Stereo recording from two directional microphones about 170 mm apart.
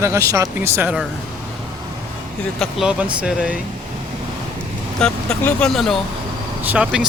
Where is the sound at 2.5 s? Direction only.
5° right (ahead or behind).